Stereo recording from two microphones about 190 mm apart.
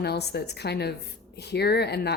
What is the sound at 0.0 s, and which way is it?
Speech, 60° left (ahead or behind).